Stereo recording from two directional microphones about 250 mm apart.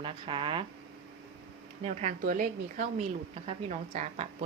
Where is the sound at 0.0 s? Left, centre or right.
Centre.